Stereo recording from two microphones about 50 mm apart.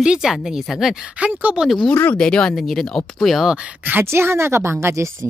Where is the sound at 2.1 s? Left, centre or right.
Centre.